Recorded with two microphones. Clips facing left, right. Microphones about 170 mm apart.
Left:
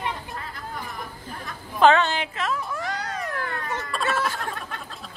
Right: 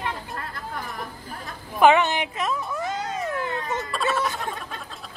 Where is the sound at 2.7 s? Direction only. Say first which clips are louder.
Right 2 dB; 20° right (ahead or behind).